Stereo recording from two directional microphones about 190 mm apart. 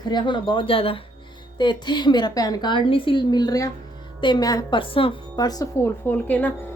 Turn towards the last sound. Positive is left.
turn(degrees=10)  # may be behind; listen again after turning